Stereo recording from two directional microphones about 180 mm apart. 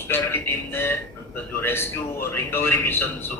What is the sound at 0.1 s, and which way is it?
A man's voice, 10° left (ahead or behind).